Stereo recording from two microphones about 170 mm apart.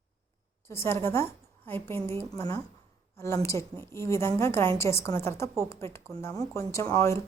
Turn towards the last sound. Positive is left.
turn(degrees=20)  # may be behind; listen again after turning